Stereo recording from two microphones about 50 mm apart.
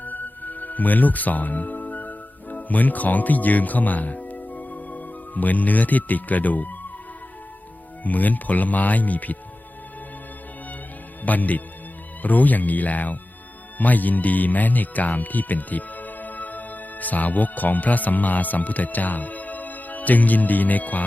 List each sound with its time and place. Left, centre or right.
0.0 s music: left
8.0 s speech: left
11.2 s speech: left